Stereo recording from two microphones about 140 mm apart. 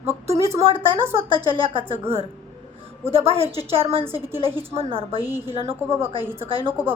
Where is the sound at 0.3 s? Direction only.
50° right (ahead or behind).